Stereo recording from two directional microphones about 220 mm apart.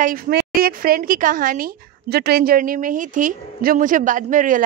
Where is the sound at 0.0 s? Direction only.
40° right (ahead or behind).